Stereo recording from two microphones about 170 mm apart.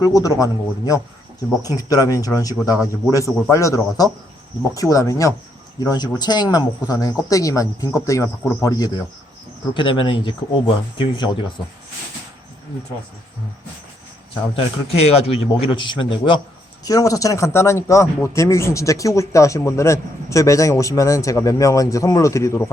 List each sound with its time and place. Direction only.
0.0 s speech: 20° left (ahead or behind)
14.5 s a man's voice: 35° left (ahead or behind); by 22.6 s 15° left (ahead or behind)